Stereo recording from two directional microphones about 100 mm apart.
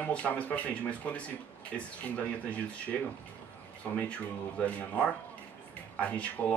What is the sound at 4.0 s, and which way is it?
Speech, 15° left (ahead or behind).